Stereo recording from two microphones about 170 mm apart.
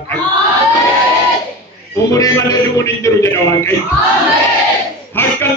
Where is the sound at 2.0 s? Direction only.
20° left (ahead or behind).